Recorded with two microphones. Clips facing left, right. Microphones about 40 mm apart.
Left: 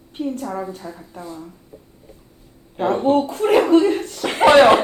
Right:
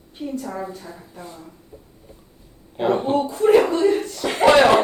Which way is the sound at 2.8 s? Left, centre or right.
Centre.